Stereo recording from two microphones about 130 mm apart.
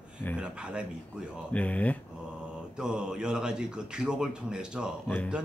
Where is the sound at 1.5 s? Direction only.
10° left (ahead or behind).